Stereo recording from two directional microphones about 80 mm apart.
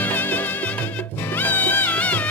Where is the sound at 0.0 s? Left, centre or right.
Left.